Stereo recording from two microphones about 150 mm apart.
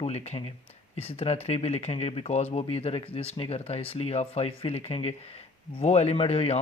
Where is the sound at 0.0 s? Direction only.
45° left (ahead or behind).